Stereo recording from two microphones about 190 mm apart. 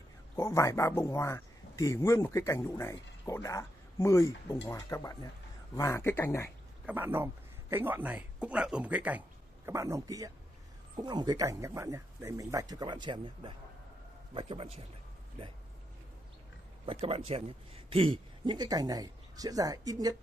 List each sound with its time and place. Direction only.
0.4 s a man's voice: 15° left (ahead or behind)
6.9 s a man's voice: 10° right (ahead or behind); by 14.9 s 30° right (ahead or behind)
16.8 s a man's voice: 30° right (ahead or behind)